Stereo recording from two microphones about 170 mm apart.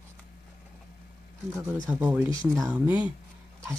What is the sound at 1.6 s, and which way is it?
Speech, 20° right (ahead or behind).